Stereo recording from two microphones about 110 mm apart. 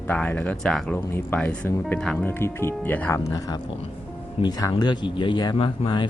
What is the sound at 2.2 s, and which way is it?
Speech, 20° left (ahead or behind).